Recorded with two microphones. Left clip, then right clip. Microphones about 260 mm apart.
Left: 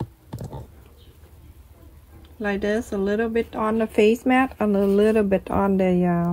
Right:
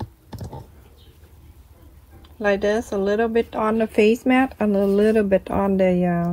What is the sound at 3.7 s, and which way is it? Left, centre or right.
Speech, centre.